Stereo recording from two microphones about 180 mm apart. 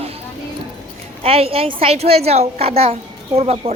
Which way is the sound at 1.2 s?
35° right (ahead or behind).